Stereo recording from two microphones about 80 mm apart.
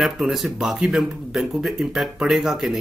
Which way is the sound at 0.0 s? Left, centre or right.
Centre.